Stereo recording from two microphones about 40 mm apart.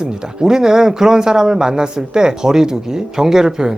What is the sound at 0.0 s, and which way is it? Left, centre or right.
Speech, centre.